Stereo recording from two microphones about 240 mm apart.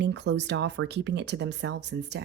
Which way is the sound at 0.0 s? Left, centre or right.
Right.